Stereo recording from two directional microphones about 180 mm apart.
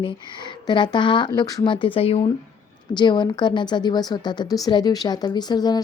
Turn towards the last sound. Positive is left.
turn(degrees=20)  # may be behind; listen again after turning